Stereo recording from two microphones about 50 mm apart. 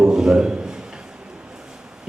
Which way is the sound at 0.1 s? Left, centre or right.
Centre.